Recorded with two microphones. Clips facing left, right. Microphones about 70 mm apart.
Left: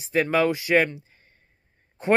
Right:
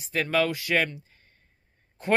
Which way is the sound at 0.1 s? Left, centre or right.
Left.